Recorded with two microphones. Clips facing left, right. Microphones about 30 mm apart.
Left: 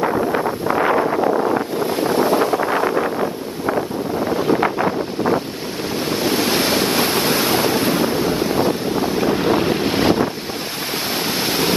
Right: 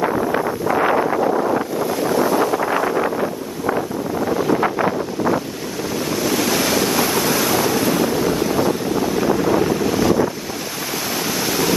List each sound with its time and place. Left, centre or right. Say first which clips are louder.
0.9 s wind noise: even; centre
1.8 s wind noise: left 1 dB; left
4.3 s wind noise: even; left
6.0 s waves: left 1 dB; left